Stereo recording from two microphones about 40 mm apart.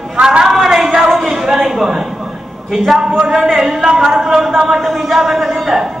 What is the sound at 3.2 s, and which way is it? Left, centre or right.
Speech, centre.